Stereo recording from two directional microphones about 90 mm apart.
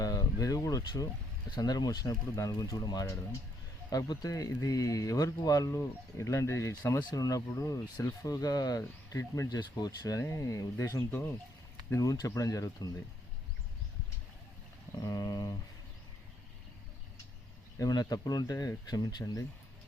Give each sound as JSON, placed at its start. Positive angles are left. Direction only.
{"t": 0.0, "sound": "speech", "side_deg": 40}
{"t": 15.0, "sound": "speech", "side_deg": 45}
{"t": 17.7, "sound": "speech", "side_deg": 40}